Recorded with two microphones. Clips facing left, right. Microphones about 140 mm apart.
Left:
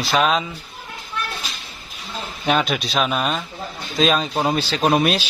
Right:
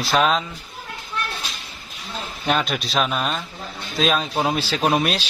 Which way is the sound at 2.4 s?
Centre (ahead or behind).